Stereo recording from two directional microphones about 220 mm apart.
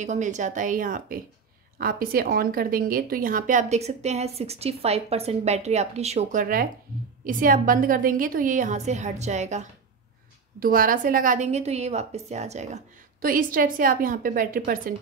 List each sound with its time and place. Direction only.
0.0 s a woman's voice: 35° right (ahead or behind)